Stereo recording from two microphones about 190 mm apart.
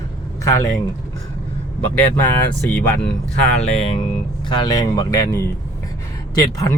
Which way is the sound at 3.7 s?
30° left (ahead or behind).